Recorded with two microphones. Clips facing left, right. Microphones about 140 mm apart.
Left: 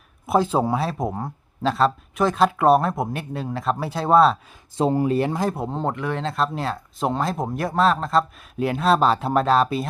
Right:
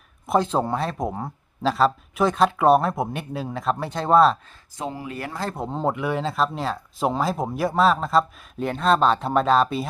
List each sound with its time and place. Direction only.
0.3 s speech: 5° left (ahead or behind)
4.8 s speech: 35° left (ahead or behind)
5.1 s speech: 20° left (ahead or behind)
5.5 s speech: centre (ahead or behind)